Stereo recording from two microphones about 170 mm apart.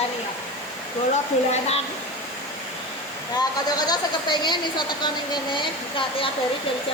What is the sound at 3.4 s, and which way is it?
Speech, 25° left (ahead or behind).